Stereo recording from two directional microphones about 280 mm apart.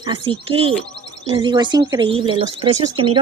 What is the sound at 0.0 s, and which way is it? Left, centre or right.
Speech, centre.